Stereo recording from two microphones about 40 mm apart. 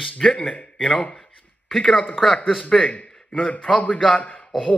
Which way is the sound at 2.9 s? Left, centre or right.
Left.